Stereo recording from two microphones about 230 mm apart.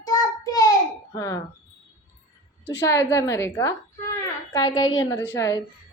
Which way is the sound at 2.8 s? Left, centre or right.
Centre.